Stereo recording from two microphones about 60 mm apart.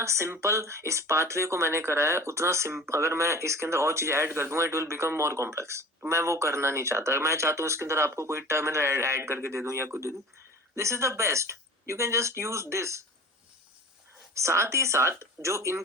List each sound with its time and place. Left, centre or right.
0.0 s speech: right
14.3 s speech: right